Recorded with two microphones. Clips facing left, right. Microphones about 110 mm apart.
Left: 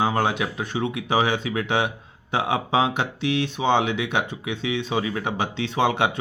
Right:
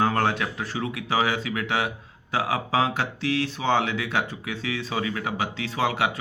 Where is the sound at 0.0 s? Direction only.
15° left (ahead or behind).